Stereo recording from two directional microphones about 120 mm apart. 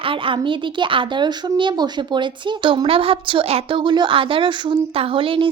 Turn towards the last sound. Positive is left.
turn(degrees=-45)  # may be behind; listen again after turning